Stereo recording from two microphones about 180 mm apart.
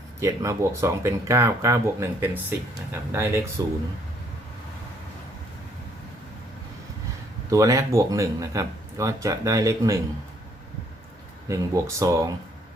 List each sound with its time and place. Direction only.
0.2 s speech: 15° right (ahead or behind)
7.5 s speech: 20° right (ahead or behind)
11.4 s speech: 15° right (ahead or behind)